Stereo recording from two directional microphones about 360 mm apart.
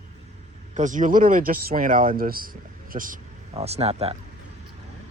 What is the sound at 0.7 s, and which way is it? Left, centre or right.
Speech, right.